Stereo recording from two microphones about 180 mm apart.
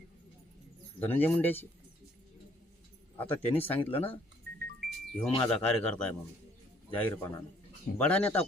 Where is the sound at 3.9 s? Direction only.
10° left (ahead or behind).